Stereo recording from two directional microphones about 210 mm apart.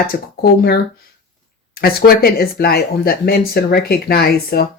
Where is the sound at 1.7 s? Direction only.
45° left (ahead or behind).